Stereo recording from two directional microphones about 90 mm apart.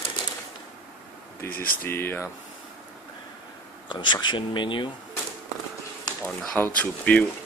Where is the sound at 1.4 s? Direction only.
25° left (ahead or behind).